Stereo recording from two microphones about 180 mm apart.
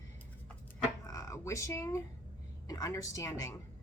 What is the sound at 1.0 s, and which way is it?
A woman's voice, 15° left (ahead or behind).